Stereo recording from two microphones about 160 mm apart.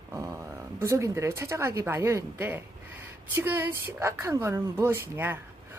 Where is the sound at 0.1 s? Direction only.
20° right (ahead or behind).